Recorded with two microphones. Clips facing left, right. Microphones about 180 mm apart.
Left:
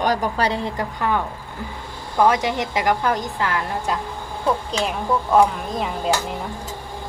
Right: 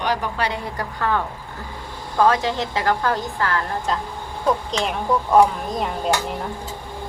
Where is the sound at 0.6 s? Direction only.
20° left (ahead or behind).